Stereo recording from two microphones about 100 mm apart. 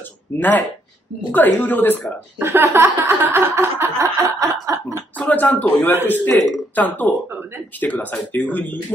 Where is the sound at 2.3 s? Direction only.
25° right (ahead or behind).